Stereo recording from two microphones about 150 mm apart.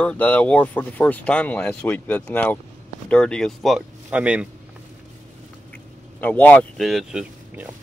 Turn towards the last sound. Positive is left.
turn(degrees=-5)  # may be behind; listen again after turning